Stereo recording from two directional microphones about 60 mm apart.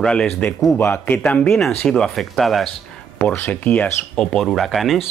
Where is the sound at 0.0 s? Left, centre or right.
Centre.